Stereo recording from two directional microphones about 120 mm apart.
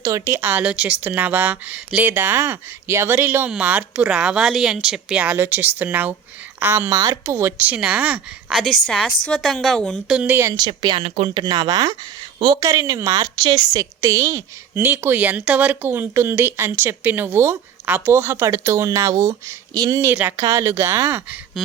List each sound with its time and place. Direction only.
0.0 s a woman's voice: 25° right (ahead or behind)
8.5 s speech: centre (ahead or behind)
10.2 s a woman's voice: 15° right (ahead or behind)
10.4 s a woman's voice: 35° right (ahead or behind)
20.1 s a woman's voice: 15° right (ahead or behind)